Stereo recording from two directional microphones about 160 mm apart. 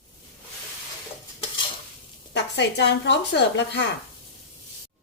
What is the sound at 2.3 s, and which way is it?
Speech, 90° left.